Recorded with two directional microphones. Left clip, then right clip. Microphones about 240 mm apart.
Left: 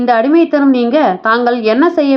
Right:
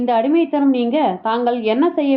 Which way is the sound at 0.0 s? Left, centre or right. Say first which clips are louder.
Left 6 dB; left.